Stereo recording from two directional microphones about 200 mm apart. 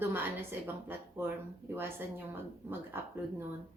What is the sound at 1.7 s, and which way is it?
A woman's voice, 10° right (ahead or behind).